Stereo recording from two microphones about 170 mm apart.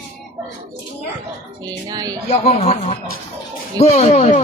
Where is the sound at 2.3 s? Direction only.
40° left (ahead or behind).